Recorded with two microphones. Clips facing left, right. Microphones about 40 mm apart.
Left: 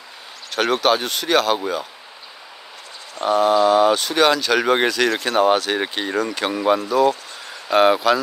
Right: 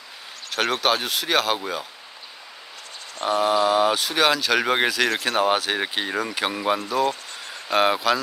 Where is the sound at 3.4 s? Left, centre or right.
Centre.